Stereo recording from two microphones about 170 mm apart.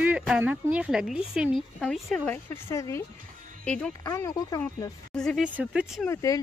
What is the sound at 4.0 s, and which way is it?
Speech, 20° left (ahead or behind).